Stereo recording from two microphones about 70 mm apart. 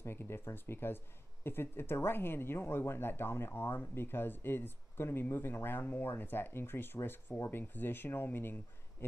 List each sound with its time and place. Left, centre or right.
0.0 s speech: left